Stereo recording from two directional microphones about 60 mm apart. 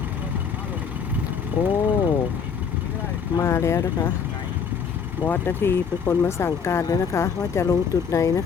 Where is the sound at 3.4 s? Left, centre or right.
Left.